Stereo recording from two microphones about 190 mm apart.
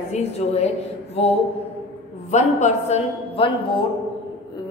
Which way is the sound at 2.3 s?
35° left (ahead or behind).